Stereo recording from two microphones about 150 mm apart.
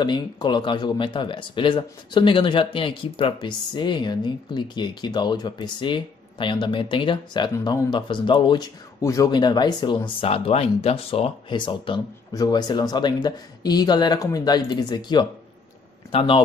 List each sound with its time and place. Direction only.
0.0 s speech: 30° left (ahead or behind)